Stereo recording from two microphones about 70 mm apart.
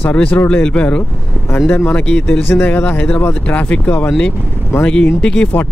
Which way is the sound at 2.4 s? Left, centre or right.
Left.